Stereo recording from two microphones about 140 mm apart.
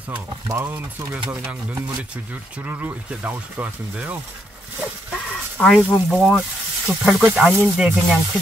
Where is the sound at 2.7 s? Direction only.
15° right (ahead or behind).